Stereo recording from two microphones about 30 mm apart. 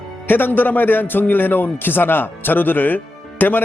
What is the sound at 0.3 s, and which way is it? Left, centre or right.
Speech, left.